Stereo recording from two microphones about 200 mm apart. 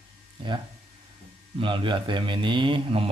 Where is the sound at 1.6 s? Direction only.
25° right (ahead or behind).